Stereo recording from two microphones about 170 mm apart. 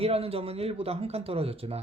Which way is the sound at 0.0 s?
35° right (ahead or behind).